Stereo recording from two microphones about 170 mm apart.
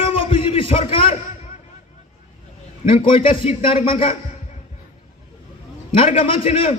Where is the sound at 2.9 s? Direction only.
30° left (ahead or behind).